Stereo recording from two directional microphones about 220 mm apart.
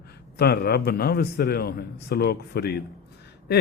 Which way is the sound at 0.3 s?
45° left (ahead or behind).